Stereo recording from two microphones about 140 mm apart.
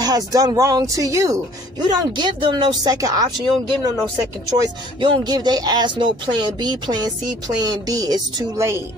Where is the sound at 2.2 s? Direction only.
35° right (ahead or behind).